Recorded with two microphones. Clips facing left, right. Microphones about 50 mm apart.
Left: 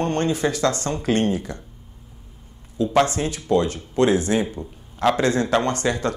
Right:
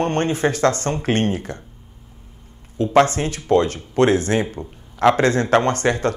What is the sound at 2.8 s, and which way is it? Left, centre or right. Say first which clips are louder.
Speech: right 3 dB; right.